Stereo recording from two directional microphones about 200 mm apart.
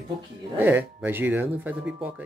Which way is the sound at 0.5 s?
10° right (ahead or behind).